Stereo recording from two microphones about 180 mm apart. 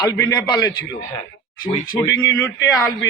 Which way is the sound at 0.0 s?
20° left (ahead or behind).